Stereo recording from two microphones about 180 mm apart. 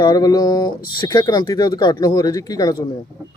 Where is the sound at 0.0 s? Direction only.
20° left (ahead or behind).